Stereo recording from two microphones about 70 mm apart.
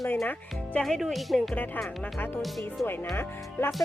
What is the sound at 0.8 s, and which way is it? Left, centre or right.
Speech, centre.